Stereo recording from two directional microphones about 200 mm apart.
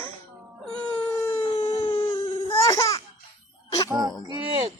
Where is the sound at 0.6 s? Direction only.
5° left (ahead or behind).